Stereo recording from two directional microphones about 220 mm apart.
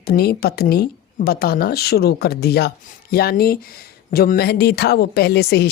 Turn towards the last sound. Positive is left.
turn(degrees=45)  # may be behind; listen again after turning